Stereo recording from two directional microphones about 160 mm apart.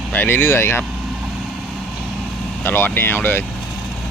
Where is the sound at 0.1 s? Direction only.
10° left (ahead or behind).